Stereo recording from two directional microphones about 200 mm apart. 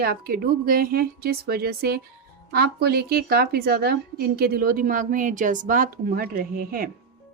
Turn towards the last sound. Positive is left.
turn(degrees=-45)  # may be behind; listen again after turning